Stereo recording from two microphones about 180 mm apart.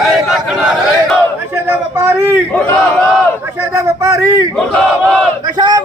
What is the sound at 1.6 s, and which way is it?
Speech, 15° right (ahead or behind).